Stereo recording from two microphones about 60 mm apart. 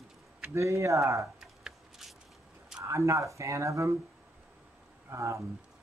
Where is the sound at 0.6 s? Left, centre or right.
Right.